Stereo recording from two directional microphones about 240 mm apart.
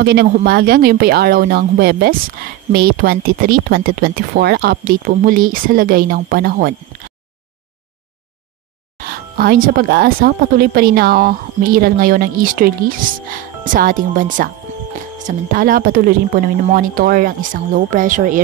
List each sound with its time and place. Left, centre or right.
0.0 s speech: right
8.9 s speech: right
13.7 s speech: right